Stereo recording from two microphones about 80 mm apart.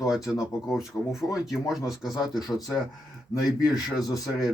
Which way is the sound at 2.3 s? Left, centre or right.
Left.